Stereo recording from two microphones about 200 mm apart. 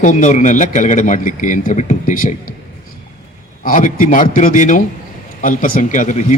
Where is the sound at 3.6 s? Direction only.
40° left (ahead or behind).